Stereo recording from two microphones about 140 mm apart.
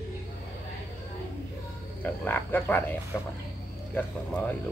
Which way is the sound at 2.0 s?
15° left (ahead or behind).